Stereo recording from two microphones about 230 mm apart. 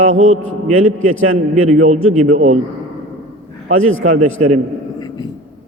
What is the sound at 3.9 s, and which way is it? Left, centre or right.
Speech, right.